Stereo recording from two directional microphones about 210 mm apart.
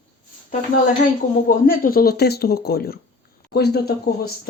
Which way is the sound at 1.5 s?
45° left (ahead or behind).